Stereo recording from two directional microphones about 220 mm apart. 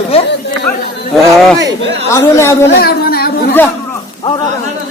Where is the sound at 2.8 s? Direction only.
45° left (ahead or behind).